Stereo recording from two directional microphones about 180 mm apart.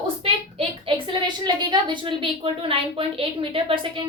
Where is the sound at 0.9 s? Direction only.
30° right (ahead or behind).